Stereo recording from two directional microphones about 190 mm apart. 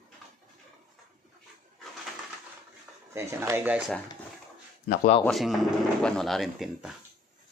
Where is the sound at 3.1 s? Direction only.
15° right (ahead or behind).